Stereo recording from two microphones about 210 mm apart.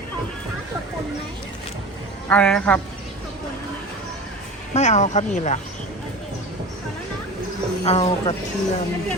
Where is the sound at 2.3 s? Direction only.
5° left (ahead or behind).